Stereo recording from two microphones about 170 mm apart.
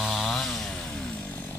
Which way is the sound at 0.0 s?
Centre (ahead or behind).